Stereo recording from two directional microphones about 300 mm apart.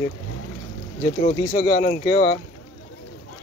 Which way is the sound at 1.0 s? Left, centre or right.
Left.